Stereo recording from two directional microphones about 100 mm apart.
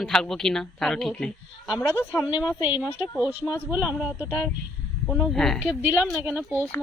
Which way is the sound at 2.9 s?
50° left (ahead or behind).